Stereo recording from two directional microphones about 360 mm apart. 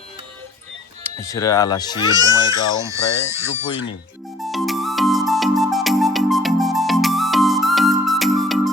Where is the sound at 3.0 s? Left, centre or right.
Left.